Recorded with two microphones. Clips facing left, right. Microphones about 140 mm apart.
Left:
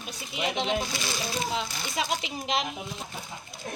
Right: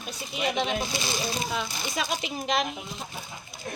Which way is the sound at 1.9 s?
20° left (ahead or behind).